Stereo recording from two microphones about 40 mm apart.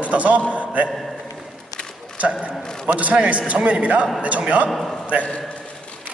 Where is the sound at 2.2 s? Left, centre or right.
Right.